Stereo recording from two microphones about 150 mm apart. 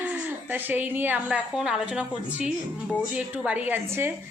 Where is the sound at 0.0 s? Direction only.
10° right (ahead or behind).